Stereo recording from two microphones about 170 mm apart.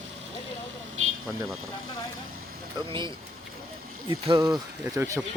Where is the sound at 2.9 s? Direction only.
30° right (ahead or behind).